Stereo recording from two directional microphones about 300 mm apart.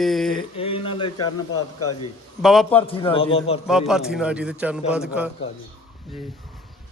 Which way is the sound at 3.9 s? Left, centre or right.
Centre.